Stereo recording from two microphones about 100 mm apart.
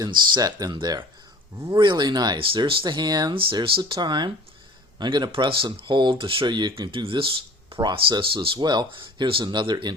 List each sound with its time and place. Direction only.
0.0 s speech: 45° right (ahead or behind)
8.6 s speech: 45° right (ahead or behind)